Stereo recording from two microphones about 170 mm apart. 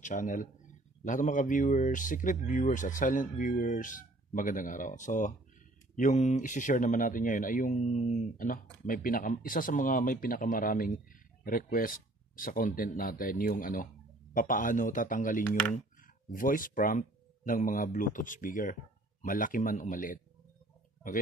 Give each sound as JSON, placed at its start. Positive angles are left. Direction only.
{"t": 0.0, "sound": "speech", "side_deg": 45}